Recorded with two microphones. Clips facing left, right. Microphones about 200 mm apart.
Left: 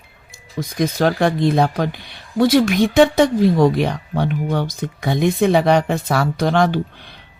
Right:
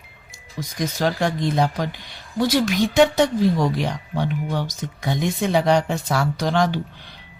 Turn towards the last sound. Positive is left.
turn(degrees=60)  # may be behind; listen again after turning